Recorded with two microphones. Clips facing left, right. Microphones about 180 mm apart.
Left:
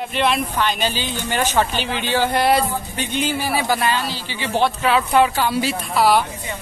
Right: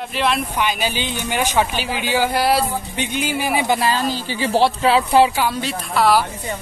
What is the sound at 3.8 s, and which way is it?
A man's voice, 40° right (ahead or behind).